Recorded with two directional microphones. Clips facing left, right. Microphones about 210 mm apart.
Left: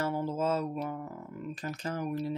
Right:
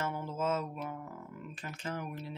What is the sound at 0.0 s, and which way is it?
Mantra, 35° left (ahead or behind).